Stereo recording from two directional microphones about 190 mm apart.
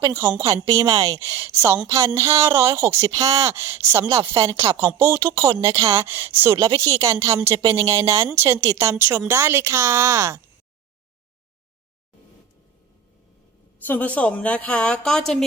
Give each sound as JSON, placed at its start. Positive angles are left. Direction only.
{"t": 0.1, "sound": "speech", "side_deg": -15}
{"t": 13.8, "sound": "speech", "side_deg": 10}